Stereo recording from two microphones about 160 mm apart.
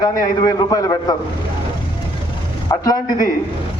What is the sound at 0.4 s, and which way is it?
Speech, 25° left (ahead or behind).